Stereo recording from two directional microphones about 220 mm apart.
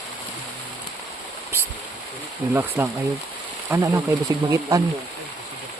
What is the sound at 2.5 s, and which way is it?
Speech, 10° right (ahead or behind).